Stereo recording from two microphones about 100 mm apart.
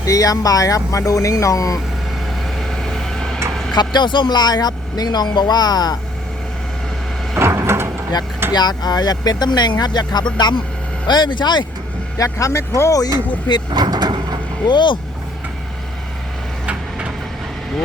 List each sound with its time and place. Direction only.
0.0 s speech: 35° left (ahead or behind)
2.6 s vehicle: 5° left (ahead or behind)
3.8 s speech: 50° left (ahead or behind)
7.3 s a sound: 25° right (ahead or behind)
8.5 s speech: 45° left (ahead or behind)
12.1 s speech: 30° left (ahead or behind)
13.7 s speech: 50° right (ahead or behind)
14.7 s speech: 50° left (ahead or behind)